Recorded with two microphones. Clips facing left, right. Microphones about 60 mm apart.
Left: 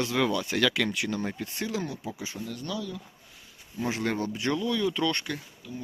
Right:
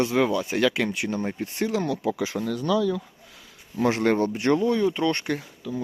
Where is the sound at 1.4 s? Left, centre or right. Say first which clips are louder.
Right 6 dB; right.